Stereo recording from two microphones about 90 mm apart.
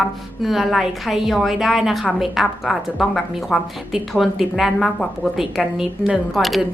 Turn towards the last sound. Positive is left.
turn(degrees=0)  # may be behind; listen again after turning